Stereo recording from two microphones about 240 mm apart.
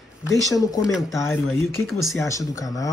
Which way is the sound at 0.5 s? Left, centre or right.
Centre.